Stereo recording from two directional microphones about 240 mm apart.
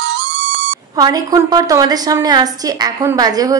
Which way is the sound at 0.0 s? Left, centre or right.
Right.